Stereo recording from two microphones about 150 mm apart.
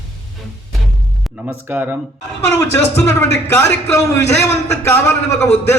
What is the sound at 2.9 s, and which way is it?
A man's voice, 20° left (ahead or behind).